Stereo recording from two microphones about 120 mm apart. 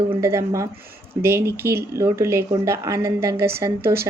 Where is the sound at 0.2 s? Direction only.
25° right (ahead or behind).